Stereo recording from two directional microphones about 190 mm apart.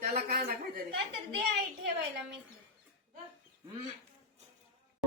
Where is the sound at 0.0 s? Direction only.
50° right (ahead or behind).